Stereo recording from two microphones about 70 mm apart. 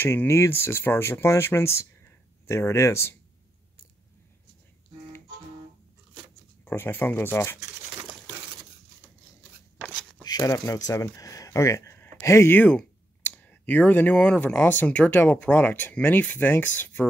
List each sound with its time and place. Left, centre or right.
0.3 s speech: left
6.6 s speech: left
10.2 s a sound: left
10.5 s speech: left
12.4 s clicking: left
14.1 s speech: centre
14.5 s speech: left